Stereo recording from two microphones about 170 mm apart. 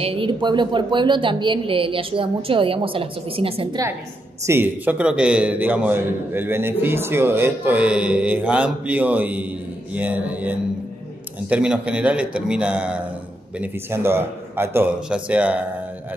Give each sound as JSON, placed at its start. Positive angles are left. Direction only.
{"t": 0.0, "sound": "speech", "side_deg": -30}
{"t": 4.5, "sound": "a man's voice", "side_deg": -10}